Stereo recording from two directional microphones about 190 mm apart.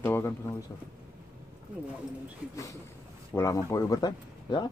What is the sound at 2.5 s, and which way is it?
Speech, 15° left (ahead or behind).